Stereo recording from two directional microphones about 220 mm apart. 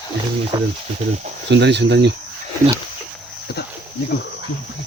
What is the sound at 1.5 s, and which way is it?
Speech, 50° right (ahead or behind).